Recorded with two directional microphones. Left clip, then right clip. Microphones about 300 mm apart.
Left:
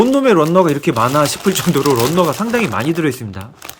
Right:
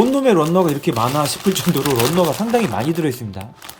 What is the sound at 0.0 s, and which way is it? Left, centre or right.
Speech, centre.